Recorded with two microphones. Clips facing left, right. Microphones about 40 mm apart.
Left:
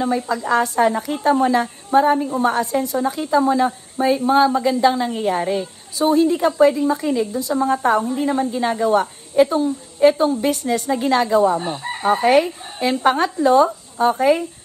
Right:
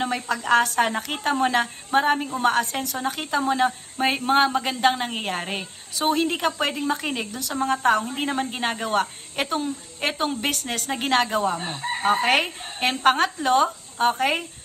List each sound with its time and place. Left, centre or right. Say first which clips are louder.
0.0 s a woman's voice: left 5 dB; right
3.3 s a woman's voice: left 5 dB; right
5.9 s a woman's voice: left 7 dB; right
7.2 s a woman's voice: left 9 dB; right
7.5 s a woman's voice: left 3 dB; right
10.9 s a woman's voice: left 4 dB; right